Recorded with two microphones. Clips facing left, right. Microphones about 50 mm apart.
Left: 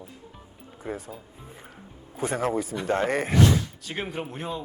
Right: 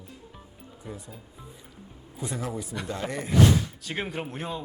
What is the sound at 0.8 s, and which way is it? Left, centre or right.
Speech, left.